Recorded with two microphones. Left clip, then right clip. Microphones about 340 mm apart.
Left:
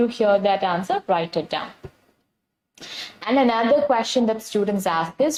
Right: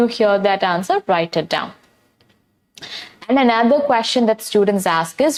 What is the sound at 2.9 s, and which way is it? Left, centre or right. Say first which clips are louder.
A woman's voice: right 3 dB; right.